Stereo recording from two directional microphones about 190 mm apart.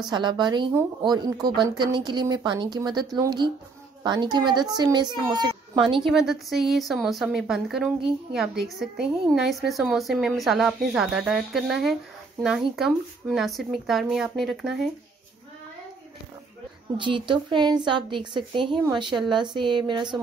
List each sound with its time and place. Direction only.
0.1 s a woman's voice: 25° right (ahead or behind)
6.0 s speech: centre (ahead or behind)
16.9 s a woman's voice: 25° right (ahead or behind)